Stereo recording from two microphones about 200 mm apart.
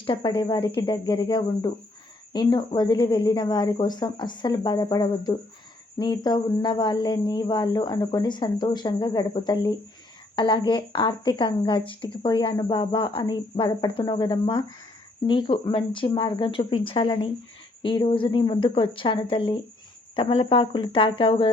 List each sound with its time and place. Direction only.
0.0 s speech: 25° left (ahead or behind)